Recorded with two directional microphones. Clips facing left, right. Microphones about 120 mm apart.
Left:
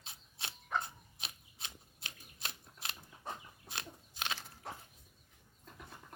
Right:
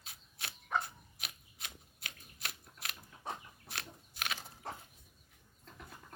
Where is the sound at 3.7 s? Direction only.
20° left (ahead or behind).